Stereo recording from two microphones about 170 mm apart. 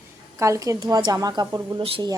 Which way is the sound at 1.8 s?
35° right (ahead or behind).